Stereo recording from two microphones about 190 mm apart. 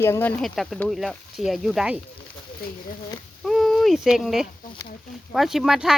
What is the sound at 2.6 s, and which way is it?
Speech, 50° left (ahead or behind).